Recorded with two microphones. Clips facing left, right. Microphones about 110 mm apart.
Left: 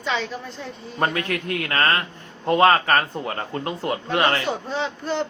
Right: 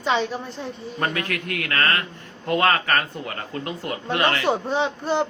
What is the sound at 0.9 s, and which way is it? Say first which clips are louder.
A man's voice: left 3 dB; 30° left (ahead or behind).